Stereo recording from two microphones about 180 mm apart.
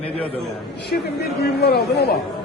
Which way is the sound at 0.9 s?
65° left (ahead or behind).